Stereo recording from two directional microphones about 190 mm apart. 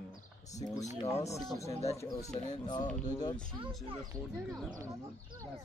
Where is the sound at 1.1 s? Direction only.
15° left (ahead or behind).